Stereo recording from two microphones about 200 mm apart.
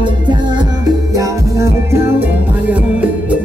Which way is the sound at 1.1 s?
15° right (ahead or behind).